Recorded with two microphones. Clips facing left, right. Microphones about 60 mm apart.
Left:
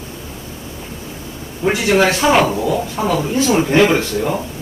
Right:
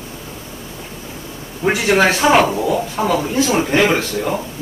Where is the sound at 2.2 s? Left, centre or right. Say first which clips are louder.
Even; centre.